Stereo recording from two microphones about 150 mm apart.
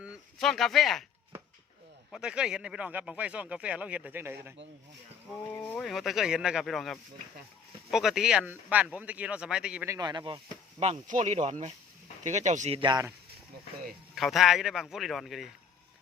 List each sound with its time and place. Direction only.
0.0 s speech: centre (ahead or behind)
2.1 s speech: 5° right (ahead or behind)
5.5 s speech: 10° left (ahead or behind)
5.8 s a man's voice: centre (ahead or behind)
9.8 s speech: 25° right (ahead or behind)
10.8 s speech: 50° right (ahead or behind)
12.8 s speech: 30° right (ahead or behind)
14.2 s a man's voice: centre (ahead or behind)